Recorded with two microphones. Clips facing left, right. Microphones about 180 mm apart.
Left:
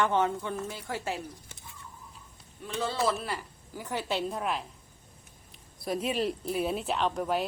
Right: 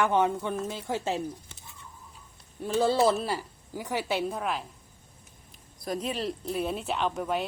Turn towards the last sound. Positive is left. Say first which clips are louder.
# even
turn(degrees=0)  # may be behind; listen again after turning